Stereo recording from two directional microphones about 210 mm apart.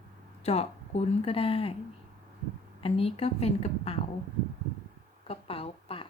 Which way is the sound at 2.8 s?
25° left (ahead or behind).